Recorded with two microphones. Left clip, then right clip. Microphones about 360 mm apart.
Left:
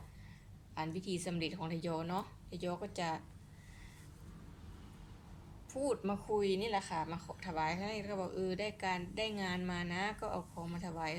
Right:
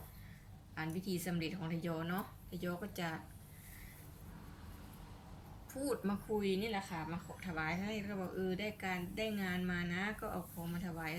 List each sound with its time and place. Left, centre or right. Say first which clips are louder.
0.8 s a woman's voice: left 2 dB; centre
5.8 s a woman's voice: left 3 dB; centre